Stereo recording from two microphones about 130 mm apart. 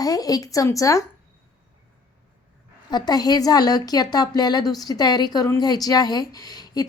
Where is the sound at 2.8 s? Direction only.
30° left (ahead or behind).